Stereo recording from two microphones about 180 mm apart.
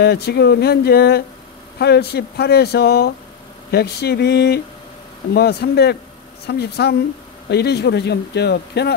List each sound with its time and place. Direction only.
0.0 s a man's voice: 65° left (ahead or behind)